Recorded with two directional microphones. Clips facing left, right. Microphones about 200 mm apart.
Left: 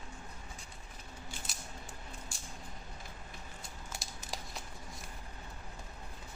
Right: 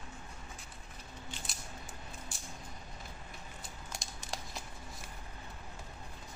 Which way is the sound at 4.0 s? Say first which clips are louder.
Right 1 dB; centre (ahead or behind).